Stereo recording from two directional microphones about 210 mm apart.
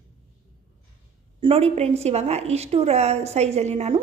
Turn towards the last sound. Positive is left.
turn(degrees=-30)  # may be behind; listen again after turning